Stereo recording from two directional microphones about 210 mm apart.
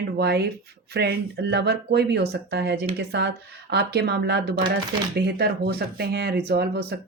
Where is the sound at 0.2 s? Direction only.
50° right (ahead or behind).